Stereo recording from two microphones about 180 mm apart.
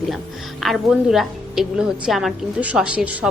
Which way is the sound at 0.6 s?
Centre (ahead or behind).